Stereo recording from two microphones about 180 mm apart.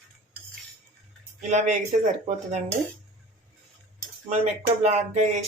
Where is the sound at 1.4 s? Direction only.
40° right (ahead or behind).